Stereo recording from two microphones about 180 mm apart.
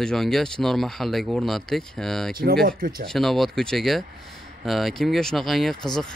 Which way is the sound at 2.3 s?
55° right (ahead or behind).